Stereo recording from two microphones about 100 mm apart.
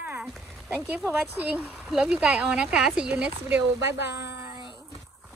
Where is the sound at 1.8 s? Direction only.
5° right (ahead or behind).